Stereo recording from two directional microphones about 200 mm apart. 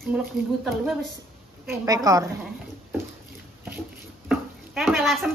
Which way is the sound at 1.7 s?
15° right (ahead or behind).